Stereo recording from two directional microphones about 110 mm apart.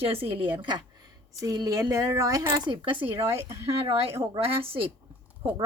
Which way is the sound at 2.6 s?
50° right (ahead or behind).